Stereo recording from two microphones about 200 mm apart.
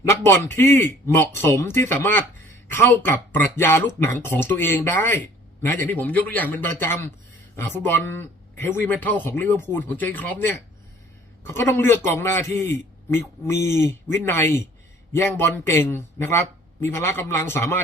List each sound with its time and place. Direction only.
0.1 s a man's voice: 15° left (ahead or behind)